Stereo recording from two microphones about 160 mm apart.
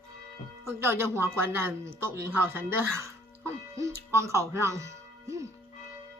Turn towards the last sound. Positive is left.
turn(degrees=-20)  # may be behind; listen again after turning